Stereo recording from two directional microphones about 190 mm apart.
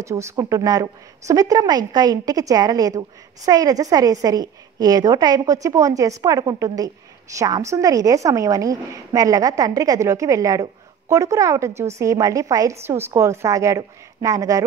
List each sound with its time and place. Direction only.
0.0 s a woman's voice: 15° right (ahead or behind)